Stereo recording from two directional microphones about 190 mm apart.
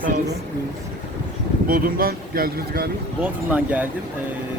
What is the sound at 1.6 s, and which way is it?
Speech, 50° right (ahead or behind).